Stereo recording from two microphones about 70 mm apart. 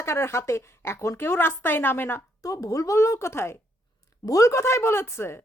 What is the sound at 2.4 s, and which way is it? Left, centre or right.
A woman's voice, left.